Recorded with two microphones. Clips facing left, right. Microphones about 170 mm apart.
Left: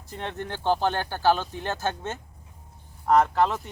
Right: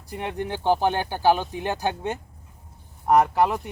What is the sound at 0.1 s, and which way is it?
Speech, 10° right (ahead or behind).